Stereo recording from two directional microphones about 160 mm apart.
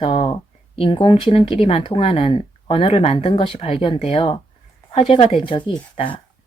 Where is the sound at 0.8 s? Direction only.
35° left (ahead or behind).